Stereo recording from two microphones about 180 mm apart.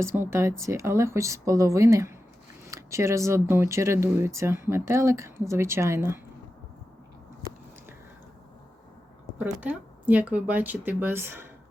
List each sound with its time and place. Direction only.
0.0 s speech: 15° right (ahead or behind)
9.4 s speech: 10° right (ahead or behind)